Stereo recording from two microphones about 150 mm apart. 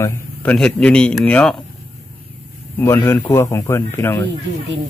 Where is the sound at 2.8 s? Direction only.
15° left (ahead or behind).